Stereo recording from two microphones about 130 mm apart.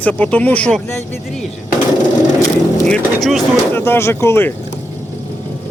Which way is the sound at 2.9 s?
Centre (ahead or behind).